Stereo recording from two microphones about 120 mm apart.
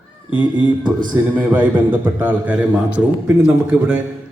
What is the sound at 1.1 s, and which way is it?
A man's voice, 15° right (ahead or behind).